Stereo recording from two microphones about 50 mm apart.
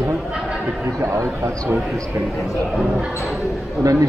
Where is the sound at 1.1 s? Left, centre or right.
Right.